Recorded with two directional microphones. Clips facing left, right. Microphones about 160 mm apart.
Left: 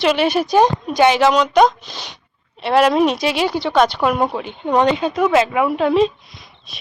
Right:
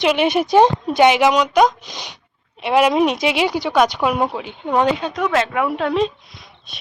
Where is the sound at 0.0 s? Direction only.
15° right (ahead or behind).